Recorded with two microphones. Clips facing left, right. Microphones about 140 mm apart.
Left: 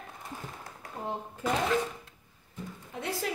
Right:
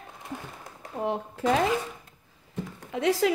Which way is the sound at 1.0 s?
75° right (ahead or behind).